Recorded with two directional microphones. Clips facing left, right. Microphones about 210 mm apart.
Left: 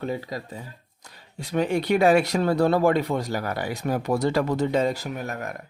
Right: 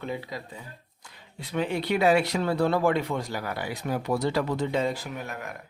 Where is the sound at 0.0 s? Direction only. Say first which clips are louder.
Left 4 dB; 40° left (ahead or behind).